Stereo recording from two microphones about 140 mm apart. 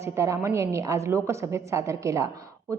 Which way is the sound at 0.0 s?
20° right (ahead or behind).